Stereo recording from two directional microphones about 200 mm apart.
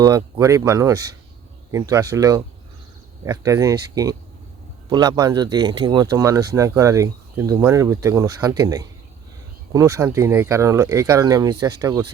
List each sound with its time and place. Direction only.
0.0 s speech: 15° right (ahead or behind)
4.9 s speech: 20° right (ahead or behind)